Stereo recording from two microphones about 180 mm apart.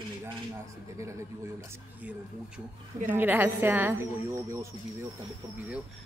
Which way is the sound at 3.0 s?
10° right (ahead or behind).